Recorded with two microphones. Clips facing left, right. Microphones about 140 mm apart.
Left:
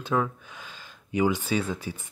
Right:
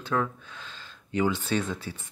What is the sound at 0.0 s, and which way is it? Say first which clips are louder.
Speech: left 2 dB; 15° left (ahead or behind).